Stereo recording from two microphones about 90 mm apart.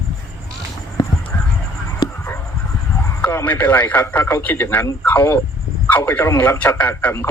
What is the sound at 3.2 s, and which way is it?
Speech, 20° left (ahead or behind).